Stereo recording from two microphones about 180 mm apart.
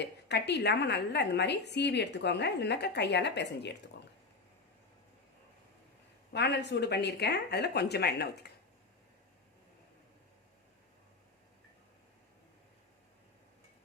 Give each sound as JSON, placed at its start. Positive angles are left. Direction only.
{"t": 0.0, "sound": "a woman's voice", "side_deg": 70}
{"t": 6.3, "sound": "a woman's voice", "side_deg": 70}